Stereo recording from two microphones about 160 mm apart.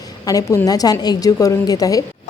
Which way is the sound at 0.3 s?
20° left (ahead or behind).